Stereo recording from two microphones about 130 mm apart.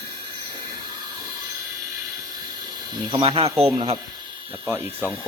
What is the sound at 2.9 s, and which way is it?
Speech, 35° right (ahead or behind).